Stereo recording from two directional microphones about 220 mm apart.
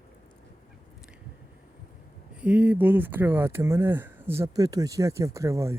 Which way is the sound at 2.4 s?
5° right (ahead or behind).